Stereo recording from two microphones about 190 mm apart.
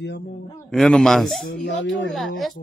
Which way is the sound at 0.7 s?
5° left (ahead or behind).